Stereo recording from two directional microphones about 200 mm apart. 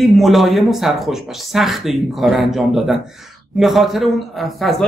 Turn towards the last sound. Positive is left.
turn(degrees=0)  # may be behind; listen again after turning